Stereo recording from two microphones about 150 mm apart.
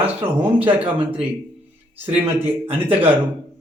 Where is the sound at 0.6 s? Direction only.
40° right (ahead or behind).